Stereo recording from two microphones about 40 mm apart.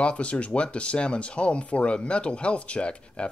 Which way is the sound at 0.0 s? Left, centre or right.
Left.